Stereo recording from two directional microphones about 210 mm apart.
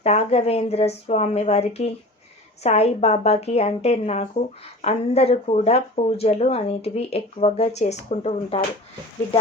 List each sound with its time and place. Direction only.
0.0 s a woman's voice: 30° left (ahead or behind)